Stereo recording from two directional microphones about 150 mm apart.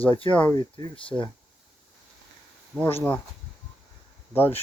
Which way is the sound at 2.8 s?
15° left (ahead or behind).